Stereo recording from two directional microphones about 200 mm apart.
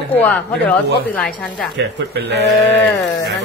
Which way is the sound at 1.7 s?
60° right (ahead or behind).